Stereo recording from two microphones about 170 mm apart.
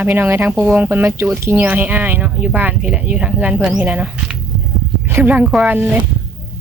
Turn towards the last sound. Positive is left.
turn(degrees=-10)  # may be behind; listen again after turning